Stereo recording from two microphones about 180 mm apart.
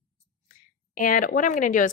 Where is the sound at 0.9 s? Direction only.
50° left (ahead or behind).